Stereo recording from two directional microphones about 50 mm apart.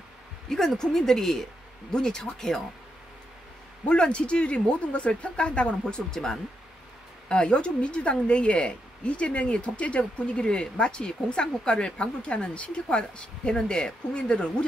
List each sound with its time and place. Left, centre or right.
0.5 s speech: centre
3.8 s speech: centre